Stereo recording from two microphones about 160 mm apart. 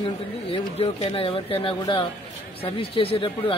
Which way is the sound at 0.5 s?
40° left (ahead or behind).